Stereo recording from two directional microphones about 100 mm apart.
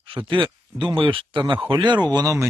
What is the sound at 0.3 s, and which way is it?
Speech, 55° right (ahead or behind).